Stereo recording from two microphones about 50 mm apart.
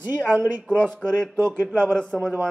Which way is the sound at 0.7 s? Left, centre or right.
Centre.